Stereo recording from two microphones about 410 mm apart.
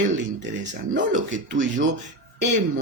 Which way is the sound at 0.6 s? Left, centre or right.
Right.